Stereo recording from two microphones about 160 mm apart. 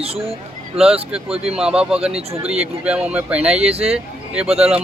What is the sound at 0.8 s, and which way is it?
Speech, 40° right (ahead or behind).